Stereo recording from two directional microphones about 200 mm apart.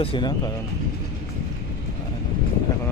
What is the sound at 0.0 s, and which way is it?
Speech, 25° left (ahead or behind).